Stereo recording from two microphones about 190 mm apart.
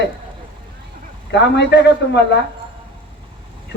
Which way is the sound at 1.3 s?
65° left (ahead or behind).